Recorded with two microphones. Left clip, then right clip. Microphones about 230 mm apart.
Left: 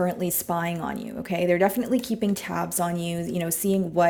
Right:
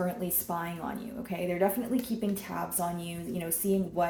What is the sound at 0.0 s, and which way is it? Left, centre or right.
Speech, left.